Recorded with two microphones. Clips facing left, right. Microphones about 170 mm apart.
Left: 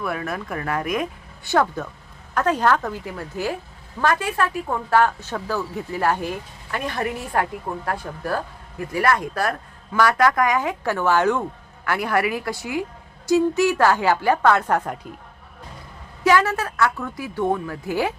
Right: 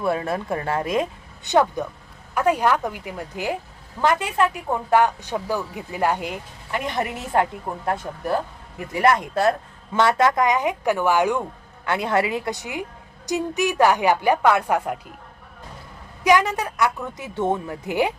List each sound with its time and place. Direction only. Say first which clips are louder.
0.0 s a woman's voice: right 4 dB; 30° right (ahead or behind); by 14.9 s 10° right (ahead or behind)
16.2 s speech: even; 15° right (ahead or behind)